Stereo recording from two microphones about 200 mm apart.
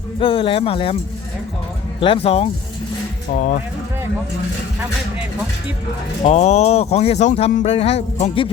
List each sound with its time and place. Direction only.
0.2 s speech: 25° left (ahead or behind)
2.0 s speech: 30° left (ahead or behind)
3.3 s speech: 40° left (ahead or behind)
6.2 s speech: 35° left (ahead or behind)